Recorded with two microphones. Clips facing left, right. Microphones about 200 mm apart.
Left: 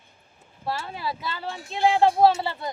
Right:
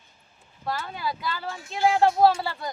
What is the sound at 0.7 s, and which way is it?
Speech, 30° left (ahead or behind).